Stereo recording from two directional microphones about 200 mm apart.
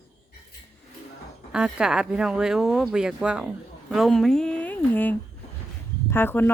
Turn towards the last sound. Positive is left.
turn(degrees=10)  # may be behind; listen again after turning